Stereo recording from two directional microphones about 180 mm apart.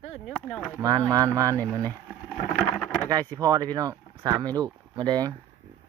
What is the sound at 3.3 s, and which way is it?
Speech, 20° right (ahead or behind).